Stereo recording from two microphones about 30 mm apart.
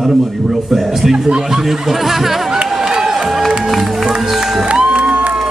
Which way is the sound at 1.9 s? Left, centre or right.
Centre.